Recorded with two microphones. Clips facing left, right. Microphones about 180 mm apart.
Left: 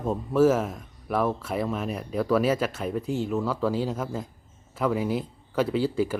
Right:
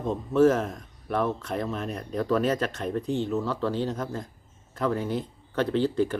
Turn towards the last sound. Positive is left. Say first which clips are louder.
# right 1 dB
turn(degrees=10)  # may be behind; listen again after turning